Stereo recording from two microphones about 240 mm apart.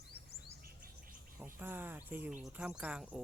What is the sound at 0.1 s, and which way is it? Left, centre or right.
Chirp, left.